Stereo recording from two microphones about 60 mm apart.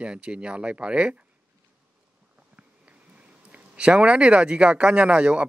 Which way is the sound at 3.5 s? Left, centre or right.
Centre.